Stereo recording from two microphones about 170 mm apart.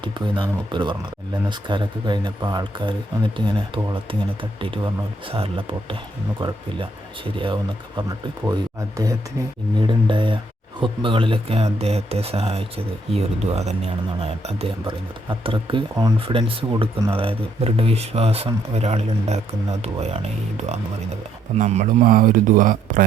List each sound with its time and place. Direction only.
0.0 s speech: 30° right (ahead or behind)
4.1 s speech: 30° right (ahead or behind)
9.8 s speech: 30° right (ahead or behind); by 23.0 s 50° right (ahead or behind)